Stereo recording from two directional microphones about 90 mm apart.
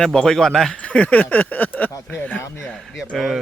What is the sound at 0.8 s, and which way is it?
A man's voice, 15° left (ahead or behind).